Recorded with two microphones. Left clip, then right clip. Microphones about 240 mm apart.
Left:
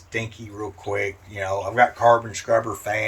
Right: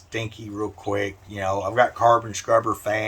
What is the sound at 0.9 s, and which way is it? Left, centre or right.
Speech, centre.